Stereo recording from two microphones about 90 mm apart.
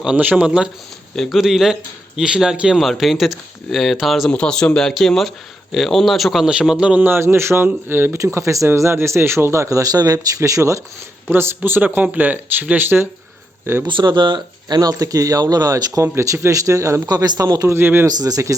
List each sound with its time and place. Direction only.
0.2 s speech: 15° right (ahead or behind)
1.1 s speech: 5° left (ahead or behind)
4.3 s speech: 10° left (ahead or behind); by 7.1 s 15° right (ahead or behind)
7.1 s speech: 25° right (ahead or behind)
8.2 s speech: 35° right (ahead or behind)
11.3 s speech: 25° right (ahead or behind)
13.8 s speech: 60° right (ahead or behind); by 17.7 s 45° right (ahead or behind)
17.7 s speech: 25° right (ahead or behind)
18.0 s speech: 45° right (ahead or behind)